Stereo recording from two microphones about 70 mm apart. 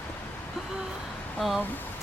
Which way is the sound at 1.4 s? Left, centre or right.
Centre.